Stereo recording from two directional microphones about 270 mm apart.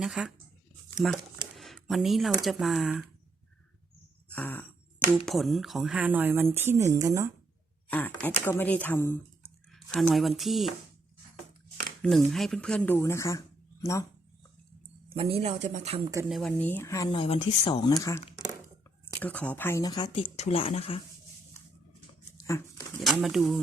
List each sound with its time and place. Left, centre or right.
0.0 s speech: centre
4.3 s throat clearing: centre
5.1 s speech: centre
7.9 s speech: centre
12.0 s speech: centre
15.1 s speech: right
16.3 s speech: centre
19.2 s speech: centre; by 21.0 s left
22.4 s dog: centre
23.0 s speech: centre